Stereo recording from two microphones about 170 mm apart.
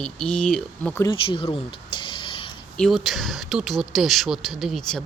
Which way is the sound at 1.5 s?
30° left (ahead or behind).